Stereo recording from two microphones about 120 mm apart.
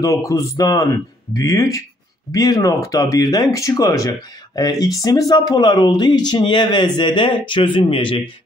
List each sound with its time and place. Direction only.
0.0 s speech: 30° left (ahead or behind); by 8.2 s 45° left (ahead or behind)